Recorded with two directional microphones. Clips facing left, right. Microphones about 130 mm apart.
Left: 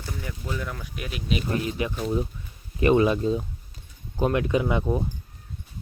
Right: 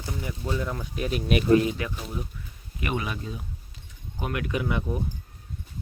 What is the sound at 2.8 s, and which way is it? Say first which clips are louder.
Speech: left 11 dB; 30° left (ahead or behind).